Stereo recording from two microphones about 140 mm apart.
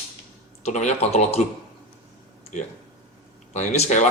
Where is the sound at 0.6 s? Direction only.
55° left (ahead or behind).